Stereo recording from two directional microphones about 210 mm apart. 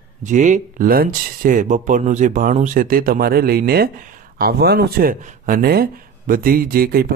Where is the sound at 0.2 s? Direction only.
35° right (ahead or behind).